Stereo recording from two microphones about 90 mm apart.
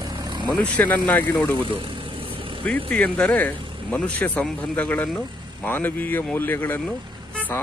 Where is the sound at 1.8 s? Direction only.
75° right (ahead or behind).